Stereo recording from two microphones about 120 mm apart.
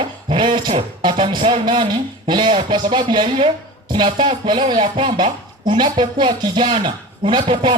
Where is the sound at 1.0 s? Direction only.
45° right (ahead or behind).